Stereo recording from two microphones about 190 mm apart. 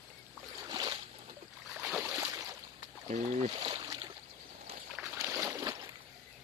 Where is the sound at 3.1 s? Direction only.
30° right (ahead or behind).